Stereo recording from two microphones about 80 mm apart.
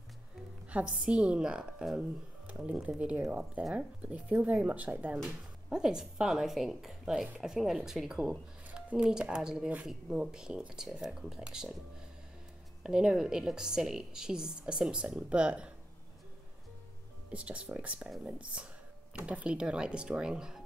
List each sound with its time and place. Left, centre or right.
0.7 s a woman's voice: centre
5.7 s a woman's voice: centre
12.8 s a woman's voice: centre
17.3 s a woman's voice: centre